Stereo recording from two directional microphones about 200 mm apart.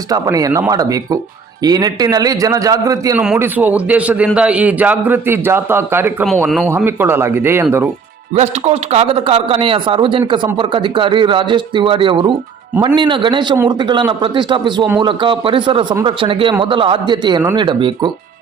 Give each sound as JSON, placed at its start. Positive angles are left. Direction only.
{"t": 0.1, "sound": "a man's voice", "side_deg": -15}
{"t": 8.4, "sound": "speech", "side_deg": -35}